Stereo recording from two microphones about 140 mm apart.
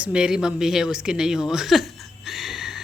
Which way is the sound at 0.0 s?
5° right (ahead or behind).